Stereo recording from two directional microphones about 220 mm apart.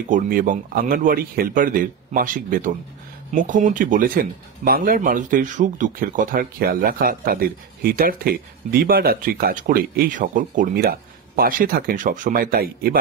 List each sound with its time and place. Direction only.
0.1 s speech: 40° right (ahead or behind)